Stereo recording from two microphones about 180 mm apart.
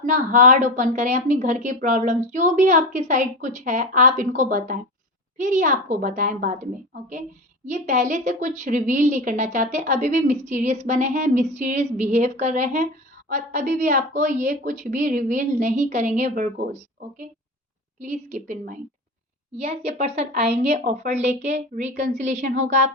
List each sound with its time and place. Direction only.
0.0 s speech: 45° right (ahead or behind)
18.0 s speech: 45° right (ahead or behind)
19.5 s a woman's voice: 35° right (ahead or behind)